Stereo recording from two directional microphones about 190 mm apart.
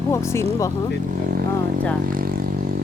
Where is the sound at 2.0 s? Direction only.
50° right (ahead or behind).